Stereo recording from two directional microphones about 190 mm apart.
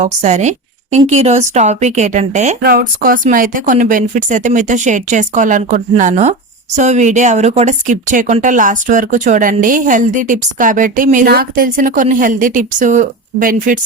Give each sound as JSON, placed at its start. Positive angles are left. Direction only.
{"t": 0.0, "sound": "a woman's voice", "side_deg": -40}
{"t": 2.6, "sound": "speech", "side_deg": -50}